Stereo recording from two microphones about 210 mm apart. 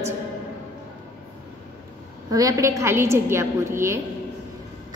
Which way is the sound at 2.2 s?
15° right (ahead or behind).